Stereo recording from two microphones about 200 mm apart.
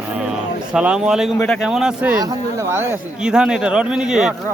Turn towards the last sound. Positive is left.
turn(degrees=-5)  # may be behind; listen again after turning